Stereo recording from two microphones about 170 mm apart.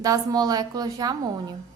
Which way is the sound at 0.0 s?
20° right (ahead or behind).